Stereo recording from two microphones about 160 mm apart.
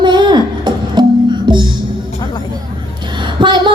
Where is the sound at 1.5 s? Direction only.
30° right (ahead or behind).